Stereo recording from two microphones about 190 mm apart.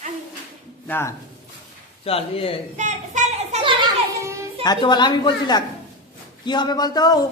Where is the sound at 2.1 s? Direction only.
30° left (ahead or behind).